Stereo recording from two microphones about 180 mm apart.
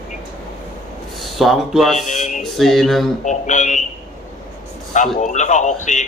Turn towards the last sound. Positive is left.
turn(degrees=40)  # may be behind; listen again after turning